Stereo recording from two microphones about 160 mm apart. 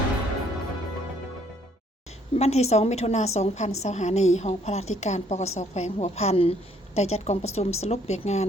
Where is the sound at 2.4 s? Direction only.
45° left (ahead or behind).